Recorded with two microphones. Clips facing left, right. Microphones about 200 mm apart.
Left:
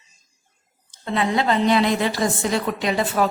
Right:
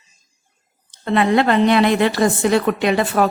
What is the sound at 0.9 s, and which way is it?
A woman's voice, 65° right (ahead or behind).